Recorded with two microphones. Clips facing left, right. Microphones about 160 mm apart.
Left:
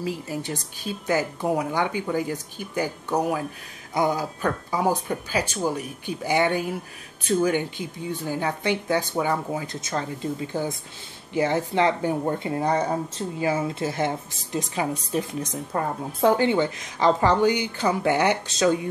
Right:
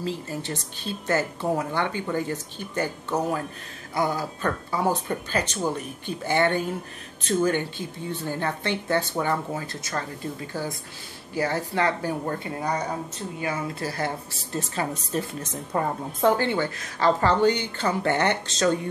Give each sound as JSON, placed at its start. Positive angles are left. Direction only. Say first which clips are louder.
{"t": 0.0, "sound": "speech", "louder": "left 1 dB", "side_deg": 10}